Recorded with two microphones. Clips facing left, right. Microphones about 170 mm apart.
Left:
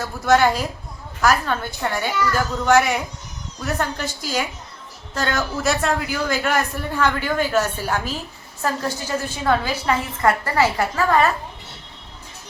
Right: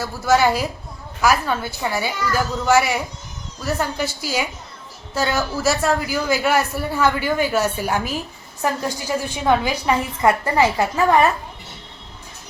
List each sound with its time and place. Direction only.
0.0 s a man's voice: 5° right (ahead or behind)